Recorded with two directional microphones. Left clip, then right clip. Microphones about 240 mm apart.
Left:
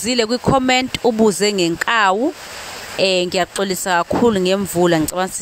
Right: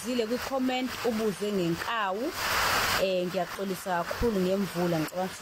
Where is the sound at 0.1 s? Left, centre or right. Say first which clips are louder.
Left 13 dB; left.